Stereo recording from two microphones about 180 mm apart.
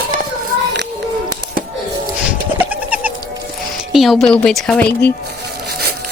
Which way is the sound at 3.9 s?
Centre (ahead or behind).